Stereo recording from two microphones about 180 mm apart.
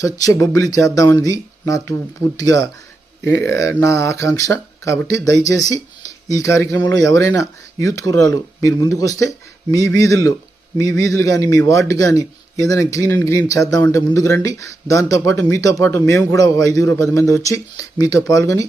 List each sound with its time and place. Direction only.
0.0 s a man's voice: 20° left (ahead or behind)
10.8 s a man's voice: 70° right (ahead or behind)
11.2 s a man's voice: 20° left (ahead or behind)